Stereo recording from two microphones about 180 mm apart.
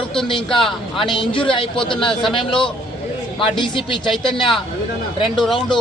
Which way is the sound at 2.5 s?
5° left (ahead or behind).